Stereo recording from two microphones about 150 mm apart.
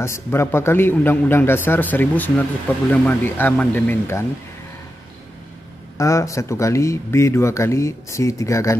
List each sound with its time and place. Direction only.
0.0 s a man's voice: 15° left (ahead or behind)
5.9 s speech: 20° left (ahead or behind)